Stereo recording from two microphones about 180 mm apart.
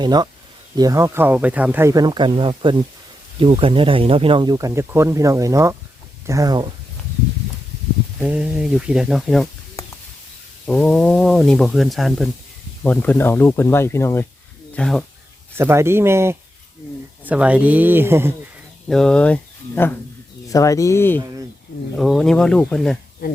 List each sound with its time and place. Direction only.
0.0 s speech: 25° right (ahead or behind)
8.2 s speech: 5° right (ahead or behind)
10.7 s speech: 5° left (ahead or behind)
14.8 s speech: 5° left (ahead or behind)
15.5 s speech: 15° right (ahead or behind)
18.9 s speech: 5° left (ahead or behind)
21.9 s speech: centre (ahead or behind)
23.2 s speech: 55° left (ahead or behind)